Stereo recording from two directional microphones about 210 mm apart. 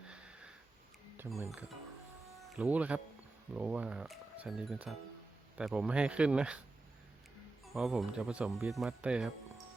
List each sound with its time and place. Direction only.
0.1 s sniff: 5° right (ahead or behind)
2.6 s speech: 5° right (ahead or behind)
7.6 s speech: centre (ahead or behind)